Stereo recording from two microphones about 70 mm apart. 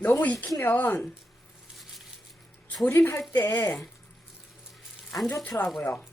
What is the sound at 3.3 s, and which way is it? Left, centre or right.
Speech, left.